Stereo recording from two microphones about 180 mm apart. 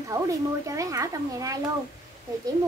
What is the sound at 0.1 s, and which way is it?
A woman's voice, 15° right (ahead or behind).